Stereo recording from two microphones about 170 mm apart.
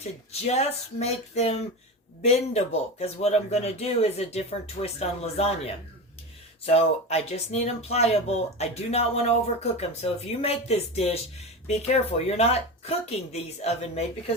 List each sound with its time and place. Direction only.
0.4 s speech: 40° left (ahead or behind)